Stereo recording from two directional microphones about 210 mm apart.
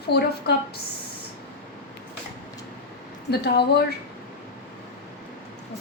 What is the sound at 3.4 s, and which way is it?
Speech, 50° left (ahead or behind).